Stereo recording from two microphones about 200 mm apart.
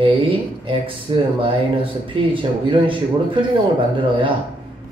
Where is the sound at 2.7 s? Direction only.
25° right (ahead or behind).